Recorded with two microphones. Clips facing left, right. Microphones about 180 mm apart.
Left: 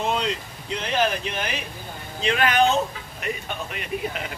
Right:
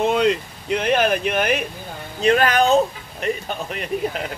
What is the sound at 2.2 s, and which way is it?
Speech, 40° right (ahead or behind).